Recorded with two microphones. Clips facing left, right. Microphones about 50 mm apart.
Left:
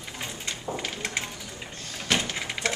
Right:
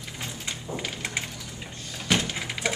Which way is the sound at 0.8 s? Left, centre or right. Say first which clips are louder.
Even; centre.